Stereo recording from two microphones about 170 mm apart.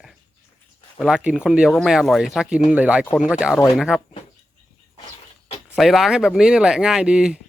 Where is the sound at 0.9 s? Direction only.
5° right (ahead or behind).